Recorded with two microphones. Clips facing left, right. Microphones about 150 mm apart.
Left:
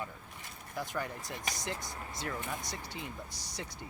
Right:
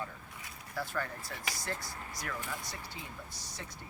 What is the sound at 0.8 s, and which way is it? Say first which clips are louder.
Speech: even; 15° left (ahead or behind).